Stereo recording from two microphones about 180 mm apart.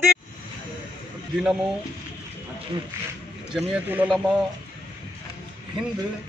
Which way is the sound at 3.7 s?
10° right (ahead or behind).